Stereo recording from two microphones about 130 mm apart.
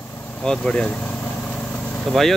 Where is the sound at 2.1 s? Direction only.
Centre (ahead or behind).